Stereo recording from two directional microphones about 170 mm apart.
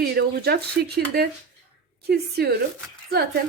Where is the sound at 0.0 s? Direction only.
65° right (ahead or behind).